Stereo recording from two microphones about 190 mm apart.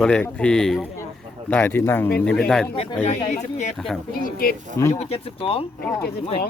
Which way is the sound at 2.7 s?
30° left (ahead or behind).